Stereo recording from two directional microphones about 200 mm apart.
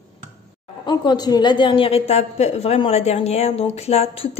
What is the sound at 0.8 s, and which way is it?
A woman's voice, 20° left (ahead or behind).